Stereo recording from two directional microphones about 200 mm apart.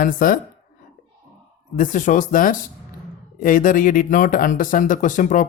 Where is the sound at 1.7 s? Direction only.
40° left (ahead or behind).